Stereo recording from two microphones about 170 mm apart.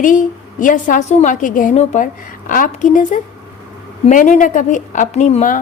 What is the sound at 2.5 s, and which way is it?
A woman's voice, 50° left (ahead or behind).